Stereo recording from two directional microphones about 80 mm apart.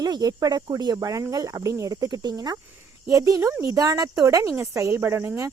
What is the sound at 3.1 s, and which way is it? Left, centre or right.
Speech, right.